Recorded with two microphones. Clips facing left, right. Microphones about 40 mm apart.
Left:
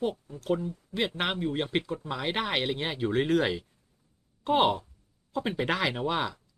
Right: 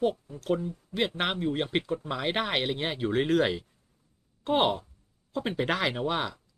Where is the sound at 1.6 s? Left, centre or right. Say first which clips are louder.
Even; centre.